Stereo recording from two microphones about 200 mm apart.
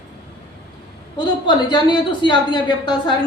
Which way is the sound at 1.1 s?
20° left (ahead or behind).